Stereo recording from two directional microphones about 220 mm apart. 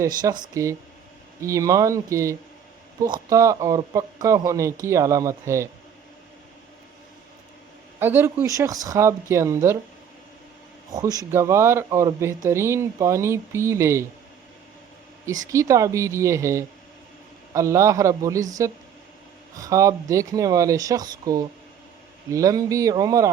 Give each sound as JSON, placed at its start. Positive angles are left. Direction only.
{"t": 0.0, "sound": "speech", "side_deg": -15}
{"t": 7.9, "sound": "speech", "side_deg": -10}
{"t": 10.9, "sound": "speech", "side_deg": -15}
{"t": 15.4, "sound": "speech", "side_deg": -15}
{"t": 19.5, "sound": "speech", "side_deg": -15}